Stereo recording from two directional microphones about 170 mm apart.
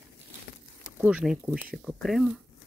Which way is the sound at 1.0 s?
5° right (ahead or behind).